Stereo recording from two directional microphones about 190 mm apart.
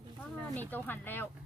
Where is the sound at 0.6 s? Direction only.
10° left (ahead or behind).